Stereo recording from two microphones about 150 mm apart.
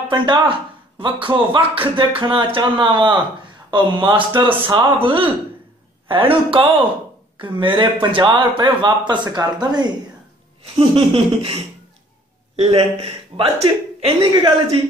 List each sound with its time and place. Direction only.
0.1 s speech: 30° right (ahead or behind)